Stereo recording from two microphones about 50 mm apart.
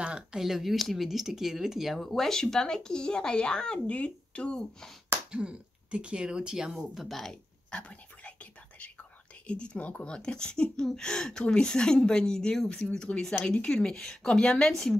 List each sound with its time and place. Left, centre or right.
0.0 s a sound: right
0.4 s speech: centre
2.0 s speech: centre
5.3 s speech: centre
7.7 s whispering: left
9.5 s speech: left